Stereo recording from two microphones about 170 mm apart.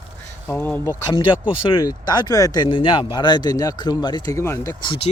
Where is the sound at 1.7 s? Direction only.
25° left (ahead or behind).